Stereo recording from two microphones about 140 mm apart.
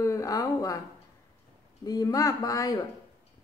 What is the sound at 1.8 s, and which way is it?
A woman's voice, 25° left (ahead or behind).